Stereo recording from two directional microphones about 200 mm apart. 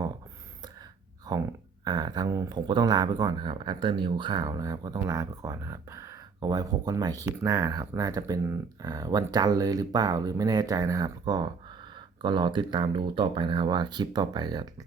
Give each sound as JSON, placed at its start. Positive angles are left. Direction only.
{"t": 1.3, "sound": "speech", "side_deg": -20}